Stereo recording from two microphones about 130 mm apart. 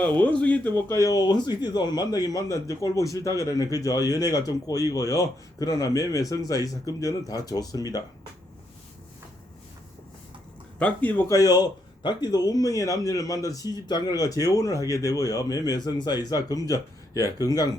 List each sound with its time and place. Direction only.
0.0 s speech: 10° left (ahead or behind); by 8.0 s 30° left (ahead or behind)
10.8 s speech: 10° left (ahead or behind); by 17.7 s 30° left (ahead or behind)